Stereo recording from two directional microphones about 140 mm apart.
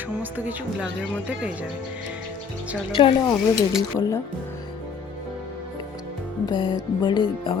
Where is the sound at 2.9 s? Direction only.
35° left (ahead or behind).